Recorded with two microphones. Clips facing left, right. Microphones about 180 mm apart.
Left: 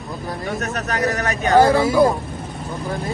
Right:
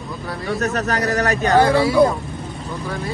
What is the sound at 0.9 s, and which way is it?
Speech, 35° right (ahead or behind).